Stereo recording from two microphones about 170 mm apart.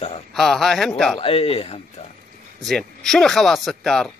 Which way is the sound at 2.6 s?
Centre (ahead or behind).